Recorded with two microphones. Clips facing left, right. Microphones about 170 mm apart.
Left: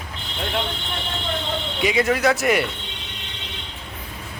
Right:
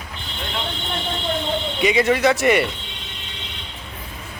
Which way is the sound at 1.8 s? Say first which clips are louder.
Right 2 dB; centre (ahead or behind).